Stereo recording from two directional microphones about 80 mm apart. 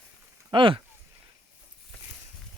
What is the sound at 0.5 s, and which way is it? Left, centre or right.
Speech, right.